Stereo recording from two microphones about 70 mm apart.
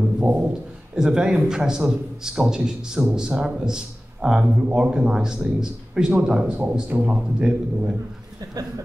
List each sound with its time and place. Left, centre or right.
0.2 s a sound: centre
0.9 s a man's voice: centre
6.9 s a man's voice: right
7.3 s a man's voice: centre